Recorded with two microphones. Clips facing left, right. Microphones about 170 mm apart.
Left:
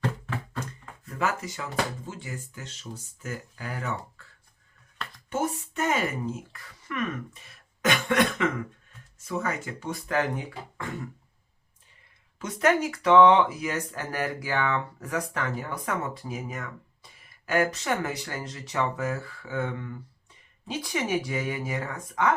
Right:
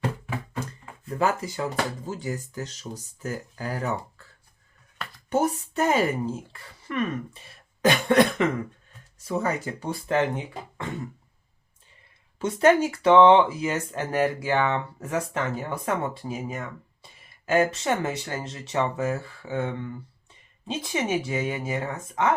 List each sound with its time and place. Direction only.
1.0 s speech: 30° right (ahead or behind)
5.3 s speech: 35° right (ahead or behind)
12.4 s speech: 30° right (ahead or behind)